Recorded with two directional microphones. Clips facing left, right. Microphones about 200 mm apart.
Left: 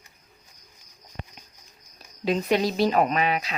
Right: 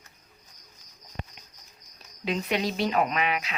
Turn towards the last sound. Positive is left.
turn(degrees=35)  # may be behind; listen again after turning